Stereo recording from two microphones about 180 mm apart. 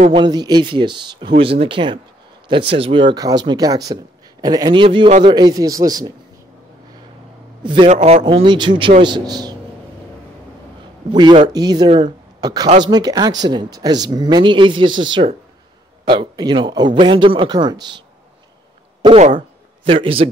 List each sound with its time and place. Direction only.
0.2 s speech: 20° right (ahead or behind)
7.6 s a man's voice: 30° right (ahead or behind)
8.2 s speech: 25° right (ahead or behind)
11.1 s speech: 25° right (ahead or behind)
19.0 s a man's voice: 40° right (ahead or behind)